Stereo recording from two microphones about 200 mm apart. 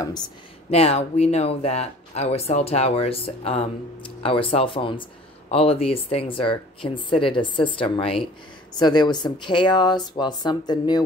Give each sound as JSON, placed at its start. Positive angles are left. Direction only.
{"t": 0.7, "sound": "speech", "side_deg": 30}